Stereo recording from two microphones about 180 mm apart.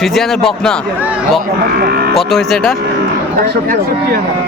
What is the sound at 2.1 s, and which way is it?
Speech, centre (ahead or behind).